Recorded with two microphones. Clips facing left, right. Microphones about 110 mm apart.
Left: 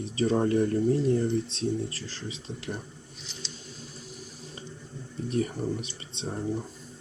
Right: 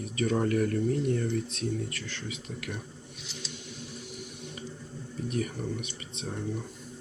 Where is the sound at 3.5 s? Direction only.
35° left (ahead or behind).